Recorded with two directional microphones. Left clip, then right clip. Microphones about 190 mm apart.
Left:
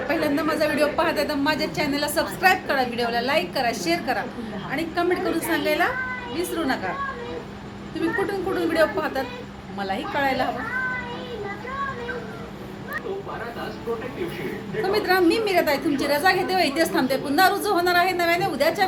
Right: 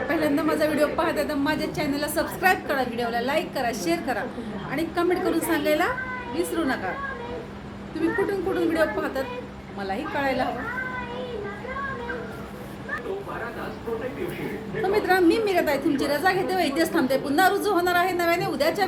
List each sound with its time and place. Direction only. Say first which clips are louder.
0.1 s a woman's voice: left 1 dB; 5° left (ahead or behind)
8.3 s a woman's voice: even; 10° left (ahead or behind)
14.9 s a woman's voice: even; 10° left (ahead or behind)